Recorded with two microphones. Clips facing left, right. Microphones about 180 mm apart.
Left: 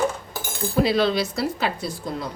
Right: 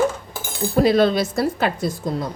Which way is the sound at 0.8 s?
50° right (ahead or behind).